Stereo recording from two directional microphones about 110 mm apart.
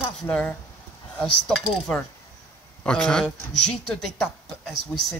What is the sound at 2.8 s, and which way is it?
Speech, 5° left (ahead or behind).